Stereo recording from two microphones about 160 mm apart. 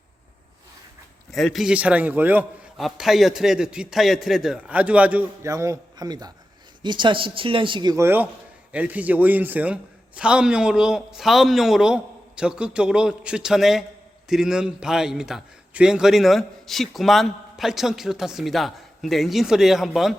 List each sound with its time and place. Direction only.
1.3 s a man's voice: centre (ahead or behind)
2.7 s a man's voice: centre (ahead or behind)